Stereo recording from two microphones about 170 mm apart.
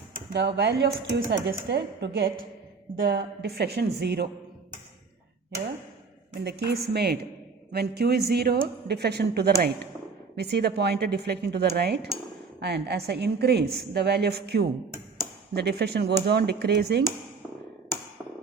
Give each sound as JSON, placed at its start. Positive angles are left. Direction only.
{"t": 0.1, "sound": "speech", "side_deg": -75}
{"t": 2.9, "sound": "speech", "side_deg": -75}
{"t": 6.3, "sound": "a woman's voice", "side_deg": -85}